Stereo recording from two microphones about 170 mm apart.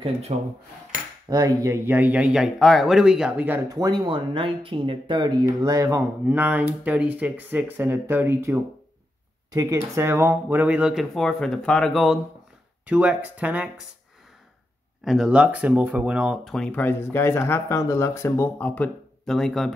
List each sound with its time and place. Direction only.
0.3 s speech: 45° right (ahead or behind)
1.3 s speech: 20° right (ahead or behind)
15.0 s speech: 5° right (ahead or behind)